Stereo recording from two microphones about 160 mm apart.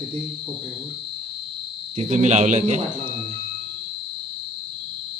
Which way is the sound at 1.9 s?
45° right (ahead or behind).